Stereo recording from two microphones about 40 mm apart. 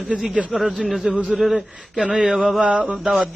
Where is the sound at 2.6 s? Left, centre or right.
Right.